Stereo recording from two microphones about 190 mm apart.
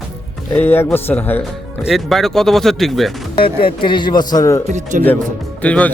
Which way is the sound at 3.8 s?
25° left (ahead or behind).